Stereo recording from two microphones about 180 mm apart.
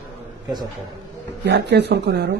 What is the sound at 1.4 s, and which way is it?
Speech, 70° right (ahead or behind).